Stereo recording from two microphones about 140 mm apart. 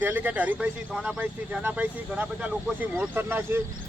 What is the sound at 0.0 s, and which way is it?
A man's voice, 10° right (ahead or behind).